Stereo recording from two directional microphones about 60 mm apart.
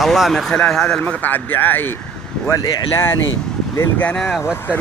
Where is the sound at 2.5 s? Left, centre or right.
Left.